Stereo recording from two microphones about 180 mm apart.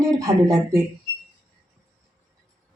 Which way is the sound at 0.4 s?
20° right (ahead or behind).